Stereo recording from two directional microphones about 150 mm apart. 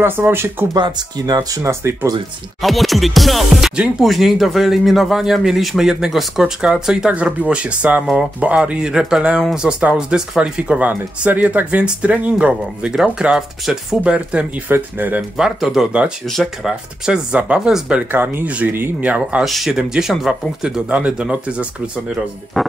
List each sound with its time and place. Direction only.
0.0 s speech: 15° right (ahead or behind)
0.7 s speech: 30° right (ahead or behind)
2.6 s speech: centre (ahead or behind)